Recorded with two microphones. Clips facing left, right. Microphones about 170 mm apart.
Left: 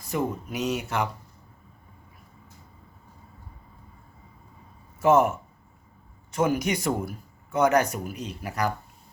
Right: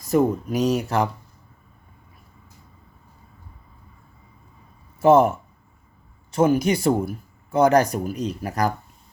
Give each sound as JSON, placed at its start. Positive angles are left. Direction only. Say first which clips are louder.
{"t": 0.1, "sound": "speech", "louder": "right 9 dB", "side_deg": -40}
{"t": 4.9, "sound": "speech", "louder": "right 5 dB", "side_deg": -30}